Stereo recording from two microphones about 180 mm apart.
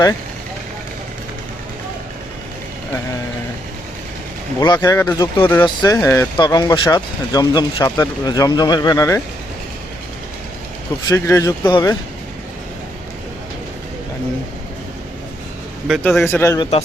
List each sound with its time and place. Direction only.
4.6 s speech: 20° left (ahead or behind)
11.0 s speech: 15° left (ahead or behind)
15.9 s a man's voice: centre (ahead or behind)
16.2 s a man's voice: 15° left (ahead or behind)